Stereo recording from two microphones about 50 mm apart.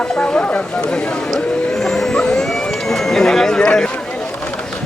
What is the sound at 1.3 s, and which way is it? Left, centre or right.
Vehicle, centre.